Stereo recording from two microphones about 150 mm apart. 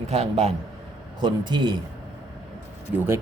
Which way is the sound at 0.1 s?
45° right (ahead or behind).